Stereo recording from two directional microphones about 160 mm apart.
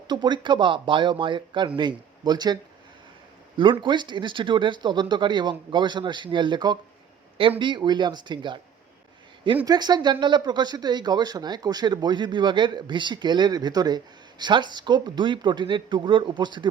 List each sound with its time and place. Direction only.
0.1 s speech: 30° right (ahead or behind)
3.6 s speech: 30° right (ahead or behind)
9.6 s speech: 25° right (ahead or behind)